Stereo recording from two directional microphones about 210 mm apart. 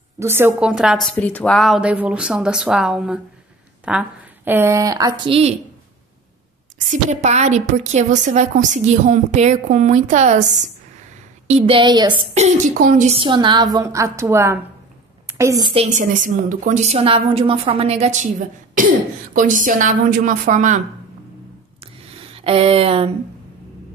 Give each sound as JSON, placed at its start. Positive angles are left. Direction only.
{"t": 0.2, "sound": "a woman's voice", "side_deg": -10}
{"t": 6.9, "sound": "a woman's voice", "side_deg": -35}
{"t": 12.2, "sound": "a woman's voice", "side_deg": -30}
{"t": 15.7, "sound": "a woman's voice", "side_deg": -35}
{"t": 22.3, "sound": "speech", "side_deg": -25}